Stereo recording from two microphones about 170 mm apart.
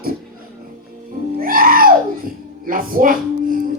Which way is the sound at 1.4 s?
55° right (ahead or behind).